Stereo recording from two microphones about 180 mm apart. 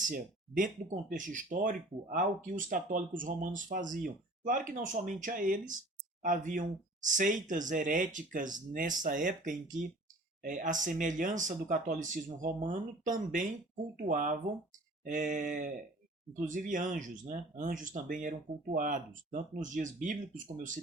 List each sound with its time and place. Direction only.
0.0 s speech: 50° right (ahead or behind)